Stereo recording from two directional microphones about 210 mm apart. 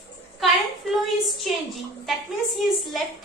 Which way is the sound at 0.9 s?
Centre (ahead or behind).